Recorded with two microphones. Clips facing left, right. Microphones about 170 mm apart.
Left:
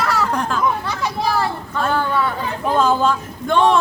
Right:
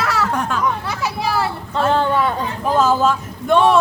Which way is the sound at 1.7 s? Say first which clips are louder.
Right 3 dB; 25° right (ahead or behind).